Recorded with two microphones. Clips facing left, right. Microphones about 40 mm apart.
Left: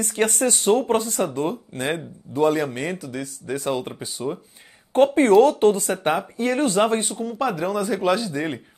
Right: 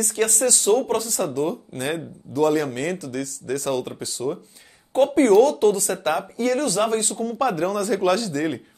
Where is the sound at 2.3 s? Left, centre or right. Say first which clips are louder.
Even; centre.